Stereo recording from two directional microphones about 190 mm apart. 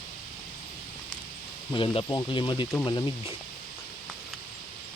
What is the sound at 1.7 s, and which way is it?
Speech, 30° left (ahead or behind).